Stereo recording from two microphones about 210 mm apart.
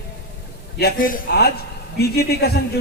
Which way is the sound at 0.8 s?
45° left (ahead or behind).